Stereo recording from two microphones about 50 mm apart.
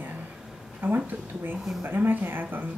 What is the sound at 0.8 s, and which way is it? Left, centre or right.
Speech, right.